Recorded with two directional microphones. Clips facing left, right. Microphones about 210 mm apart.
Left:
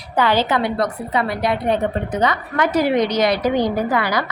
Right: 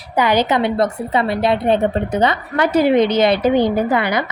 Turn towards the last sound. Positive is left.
turn(degrees=-20)  # may be behind; listen again after turning